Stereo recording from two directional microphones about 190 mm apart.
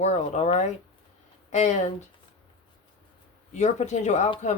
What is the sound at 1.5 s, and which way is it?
Speech, 40° left (ahead or behind).